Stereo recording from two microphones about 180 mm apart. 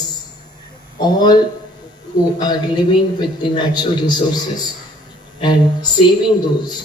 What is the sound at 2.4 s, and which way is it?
A man's voice, 25° left (ahead or behind).